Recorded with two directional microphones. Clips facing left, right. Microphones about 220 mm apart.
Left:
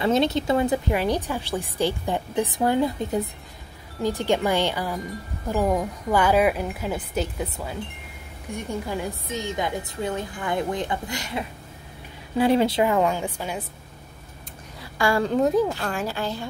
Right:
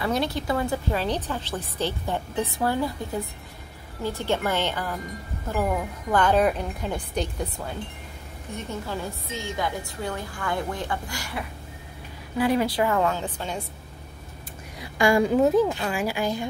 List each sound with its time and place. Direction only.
0.0 s a woman's voice: 25° left (ahead or behind)
15.0 s speech: 15° right (ahead or behind)
15.3 s speech: centre (ahead or behind)